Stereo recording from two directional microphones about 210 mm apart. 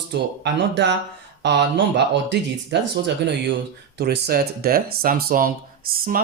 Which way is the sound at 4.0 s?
50° right (ahead or behind).